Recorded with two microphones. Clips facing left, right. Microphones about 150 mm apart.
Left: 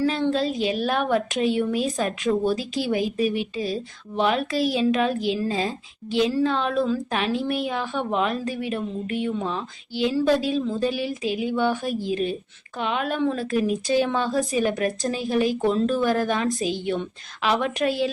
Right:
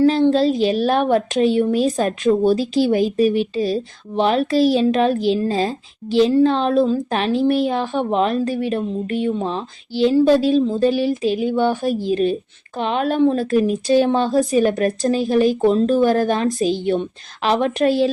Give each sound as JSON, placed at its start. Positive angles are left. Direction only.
{"t": 0.0, "sound": "a woman's voice", "side_deg": -30}
{"t": 2.3, "sound": "a woman's voice", "side_deg": -30}
{"t": 14.5, "sound": "a woman's voice", "side_deg": -40}
{"t": 15.3, "sound": "speech", "side_deg": -30}
{"t": 17.4, "sound": "a woman's voice", "side_deg": -35}